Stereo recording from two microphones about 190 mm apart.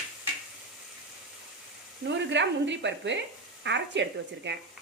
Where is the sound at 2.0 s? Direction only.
70° right (ahead or behind).